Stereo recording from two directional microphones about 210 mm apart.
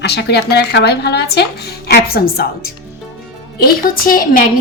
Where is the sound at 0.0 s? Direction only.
50° left (ahead or behind).